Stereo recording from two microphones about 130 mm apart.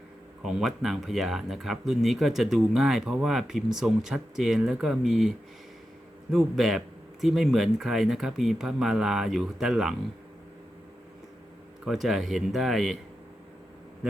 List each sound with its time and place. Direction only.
0.4 s speech: centre (ahead or behind)
6.3 s speech: centre (ahead or behind)
11.9 s speech: centre (ahead or behind)